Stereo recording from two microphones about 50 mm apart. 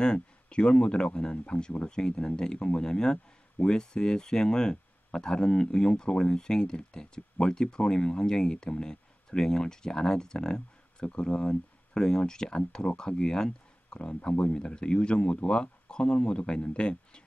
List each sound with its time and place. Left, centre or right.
0.0 s speech: centre